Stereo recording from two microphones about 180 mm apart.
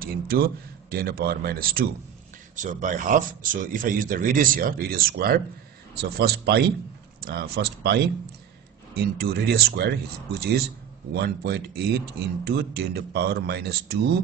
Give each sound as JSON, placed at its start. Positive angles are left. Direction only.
{"t": 0.0, "sound": "speech", "side_deg": -55}
{"t": 2.5, "sound": "speech", "side_deg": -45}